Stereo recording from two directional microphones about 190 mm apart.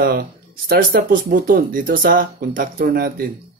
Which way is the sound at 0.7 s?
45° right (ahead or behind).